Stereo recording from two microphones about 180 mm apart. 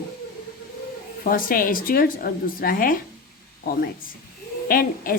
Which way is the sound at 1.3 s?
50° left (ahead or behind).